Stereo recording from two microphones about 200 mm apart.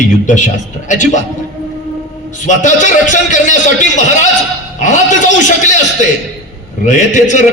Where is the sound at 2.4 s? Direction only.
40° left (ahead or behind).